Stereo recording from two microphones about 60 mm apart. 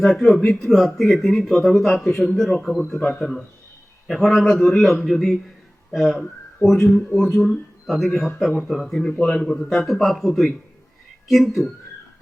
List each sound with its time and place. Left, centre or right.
0.0 s speech: centre
4.0 s a man's voice: centre